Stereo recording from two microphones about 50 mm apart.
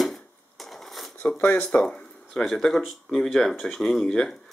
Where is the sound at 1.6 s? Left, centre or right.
Centre.